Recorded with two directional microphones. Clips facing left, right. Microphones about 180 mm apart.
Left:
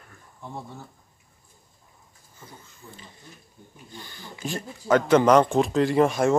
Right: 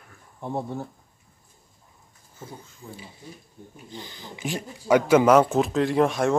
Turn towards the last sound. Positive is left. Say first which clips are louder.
# left 1 dB
turn(degrees=0)  # may be behind; listen again after turning